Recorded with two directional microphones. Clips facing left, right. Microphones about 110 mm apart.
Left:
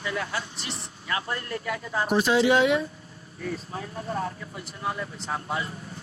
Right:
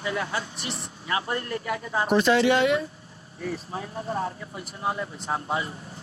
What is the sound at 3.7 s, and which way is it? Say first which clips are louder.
Speech: right 1 dB; 25° right (ahead or behind).